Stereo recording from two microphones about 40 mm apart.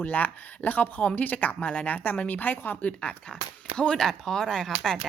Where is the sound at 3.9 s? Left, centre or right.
Centre.